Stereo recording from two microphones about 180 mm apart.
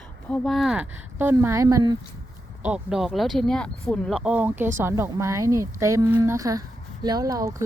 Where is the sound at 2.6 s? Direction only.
5° right (ahead or behind).